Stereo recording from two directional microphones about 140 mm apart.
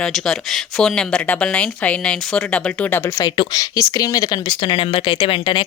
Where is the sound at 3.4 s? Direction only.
25° left (ahead or behind).